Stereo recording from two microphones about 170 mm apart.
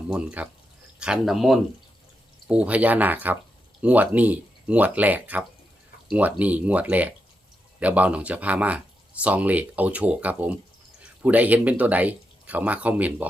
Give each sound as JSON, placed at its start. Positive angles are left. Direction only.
{"t": 0.1, "sound": "speech", "side_deg": -5}